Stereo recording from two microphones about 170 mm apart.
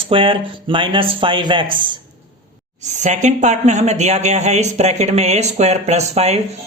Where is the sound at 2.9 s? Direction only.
45° right (ahead or behind).